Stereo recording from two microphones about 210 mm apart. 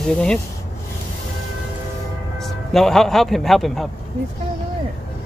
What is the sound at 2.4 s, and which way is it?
A man's voice, centre (ahead or behind).